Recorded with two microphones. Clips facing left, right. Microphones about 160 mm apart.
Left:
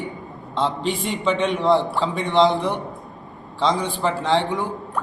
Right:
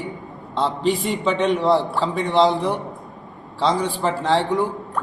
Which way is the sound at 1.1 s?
5° right (ahead or behind).